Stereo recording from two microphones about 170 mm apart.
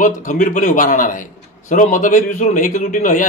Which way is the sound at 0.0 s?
50° left (ahead or behind).